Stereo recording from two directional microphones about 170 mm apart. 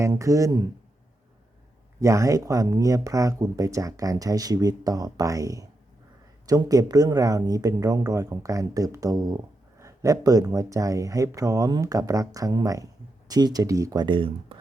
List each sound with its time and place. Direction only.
0.0 s speech: 20° right (ahead or behind)
2.0 s speech: 20° right (ahead or behind)